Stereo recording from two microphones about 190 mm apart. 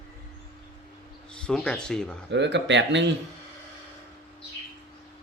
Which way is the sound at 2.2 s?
70° right (ahead or behind).